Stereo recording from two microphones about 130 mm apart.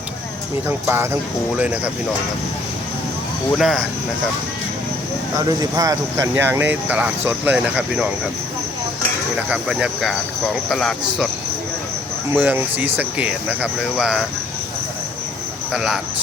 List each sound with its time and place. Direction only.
0.7 s speech: 15° right (ahead or behind)
3.6 s speech: centre (ahead or behind)
5.5 s speech: 30° right (ahead or behind)
6.3 s speech: 15° right (ahead or behind)
9.5 s speech: 5° right (ahead or behind)
12.3 s speech: 15° right (ahead or behind)
15.7 s speech: 5° right (ahead or behind)